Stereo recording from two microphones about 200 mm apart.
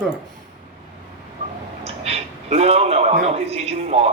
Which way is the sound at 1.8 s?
30° right (ahead or behind).